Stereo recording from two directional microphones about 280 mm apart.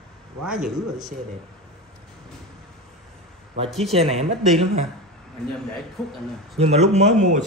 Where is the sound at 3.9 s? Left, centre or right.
Right.